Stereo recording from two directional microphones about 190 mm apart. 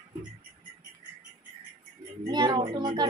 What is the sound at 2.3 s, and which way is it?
Speech, 25° right (ahead or behind).